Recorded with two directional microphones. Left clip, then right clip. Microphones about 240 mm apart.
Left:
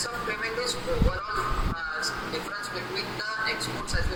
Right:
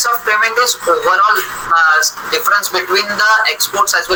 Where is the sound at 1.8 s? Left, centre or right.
Right.